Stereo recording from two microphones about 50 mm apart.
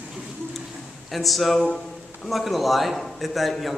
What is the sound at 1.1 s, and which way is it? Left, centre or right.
A man's voice, centre.